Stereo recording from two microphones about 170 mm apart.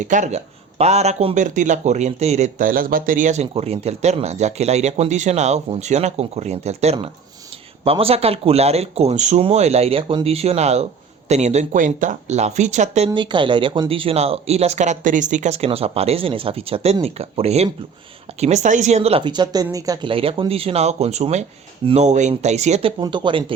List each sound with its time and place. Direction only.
0.0 s speech: 45° right (ahead or behind)
13.1 s speech: 25° right (ahead or behind)